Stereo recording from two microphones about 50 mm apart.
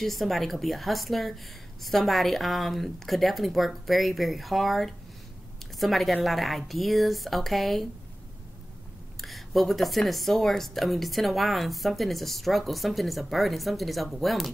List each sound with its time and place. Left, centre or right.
0.0 s speech: centre
9.2 s speech: centre